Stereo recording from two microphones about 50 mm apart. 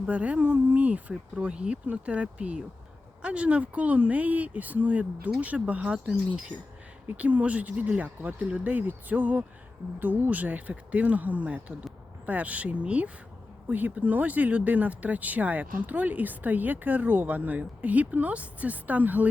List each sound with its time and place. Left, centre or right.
0.1 s speech: right
6.1 s speech: centre
7.2 s speech: right